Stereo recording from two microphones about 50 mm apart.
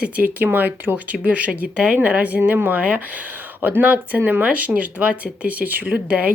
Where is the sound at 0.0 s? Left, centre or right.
Right.